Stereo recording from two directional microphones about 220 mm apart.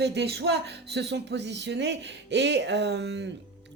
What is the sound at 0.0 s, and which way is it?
Speech, 50° right (ahead or behind).